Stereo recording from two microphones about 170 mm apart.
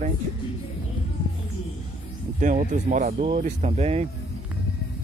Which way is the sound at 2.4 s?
45° right (ahead or behind).